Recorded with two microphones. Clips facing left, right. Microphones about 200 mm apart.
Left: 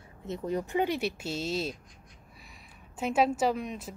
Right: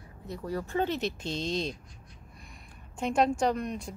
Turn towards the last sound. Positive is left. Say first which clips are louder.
# right 1 dB
turn(degrees=0)  # may be behind; listen again after turning